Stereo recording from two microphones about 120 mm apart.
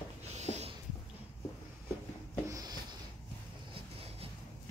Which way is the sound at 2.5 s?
30° right (ahead or behind).